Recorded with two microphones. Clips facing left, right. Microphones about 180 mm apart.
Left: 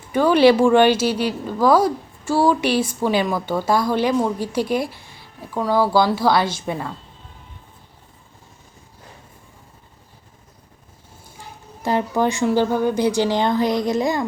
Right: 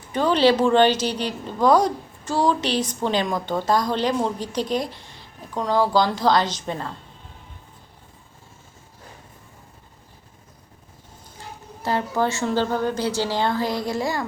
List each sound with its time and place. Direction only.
0.1 s a woman's voice: 10° left (ahead or behind)
11.8 s a woman's voice: 15° left (ahead or behind)